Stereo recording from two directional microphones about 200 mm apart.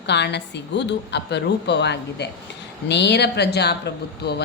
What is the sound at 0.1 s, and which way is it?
Speech, 60° left (ahead or behind).